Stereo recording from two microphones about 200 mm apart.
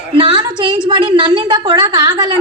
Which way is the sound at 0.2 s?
25° right (ahead or behind).